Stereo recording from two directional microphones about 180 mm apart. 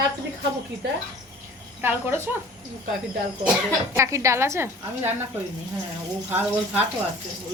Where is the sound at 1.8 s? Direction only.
10° right (ahead or behind).